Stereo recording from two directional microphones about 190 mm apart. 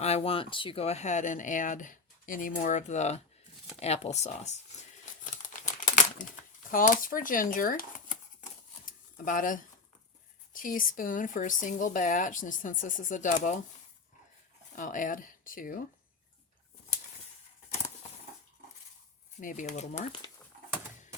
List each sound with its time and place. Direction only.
0.0 s speech: 35° left (ahead or behind)
5.2 s crumpling: 40° left (ahead or behind)
6.7 s a sound: 45° left (ahead or behind)
10.5 s speech: 45° left (ahead or behind)
14.8 s speech: 45° left (ahead or behind)
19.4 s speech: 45° left (ahead or behind)